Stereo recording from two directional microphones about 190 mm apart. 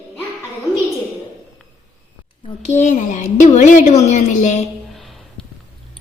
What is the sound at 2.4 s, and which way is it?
A woman's voice, 35° left (ahead or behind).